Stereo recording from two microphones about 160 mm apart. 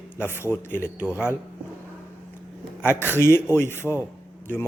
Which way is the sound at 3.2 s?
15° left (ahead or behind).